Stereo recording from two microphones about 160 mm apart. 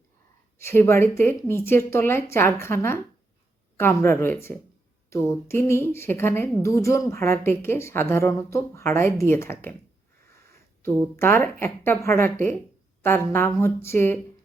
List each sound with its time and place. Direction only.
0.6 s a woman's voice: 15° left (ahead or behind)
11.2 s a woman's voice: 15° left (ahead or behind)